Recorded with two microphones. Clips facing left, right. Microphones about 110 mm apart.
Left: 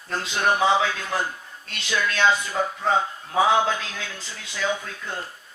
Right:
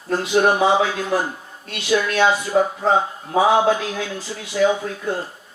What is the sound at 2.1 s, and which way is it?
Speech, 15° right (ahead or behind).